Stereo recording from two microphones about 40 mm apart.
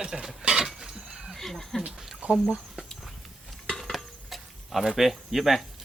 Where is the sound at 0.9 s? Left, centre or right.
Centre.